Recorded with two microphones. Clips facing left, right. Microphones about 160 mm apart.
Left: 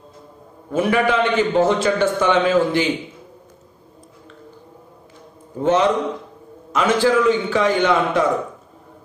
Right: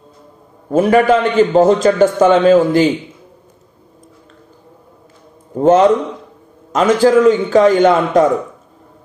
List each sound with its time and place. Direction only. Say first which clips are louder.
0.7 s a man's voice: right 7 dB; 40° right (ahead or behind)
5.6 s a man's voice: right 7 dB; 45° right (ahead or behind)